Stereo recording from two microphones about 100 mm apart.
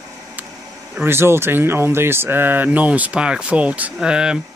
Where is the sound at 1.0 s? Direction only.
25° right (ahead or behind); by 4.4 s 10° right (ahead or behind).